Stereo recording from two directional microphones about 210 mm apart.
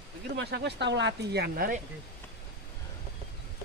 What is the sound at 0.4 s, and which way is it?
Speech, 55° right (ahead or behind).